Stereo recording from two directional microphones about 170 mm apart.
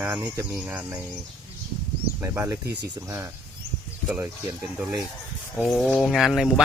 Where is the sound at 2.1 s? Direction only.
15° right (ahead or behind).